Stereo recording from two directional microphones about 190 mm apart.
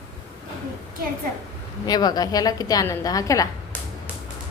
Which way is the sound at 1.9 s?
20° left (ahead or behind).